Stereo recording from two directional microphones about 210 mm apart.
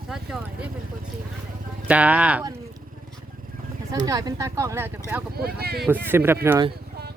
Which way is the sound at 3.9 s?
15° right (ahead or behind).